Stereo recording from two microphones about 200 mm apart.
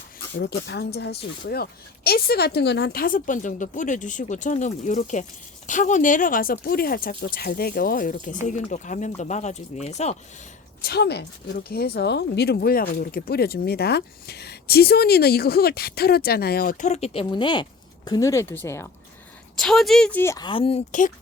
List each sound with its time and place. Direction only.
0.3 s speech: 60° left (ahead or behind); by 10.2 s 35° left (ahead or behind)
10.8 s speech: 50° left (ahead or behind); by 18.9 s 15° left (ahead or behind)
19.5 s speech: centre (ahead or behind); by 21.1 s 35° left (ahead or behind)